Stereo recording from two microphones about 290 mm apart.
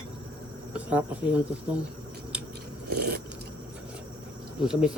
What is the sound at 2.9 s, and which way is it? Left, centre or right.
Speech, right.